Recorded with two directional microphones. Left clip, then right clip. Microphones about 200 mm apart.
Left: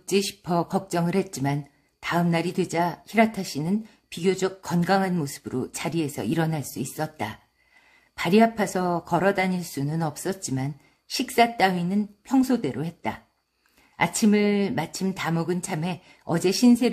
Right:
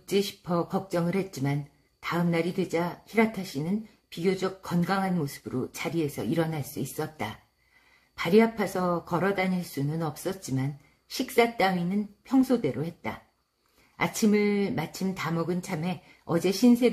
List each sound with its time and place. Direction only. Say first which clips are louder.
0.0 s speech: left 3 dB; 35° left (ahead or behind)